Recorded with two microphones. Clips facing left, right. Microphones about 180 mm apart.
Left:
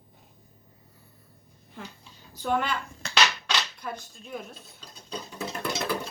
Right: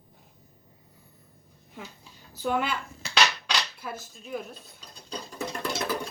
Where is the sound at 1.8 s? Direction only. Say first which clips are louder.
Left 1 dB; 5° right (ahead or behind).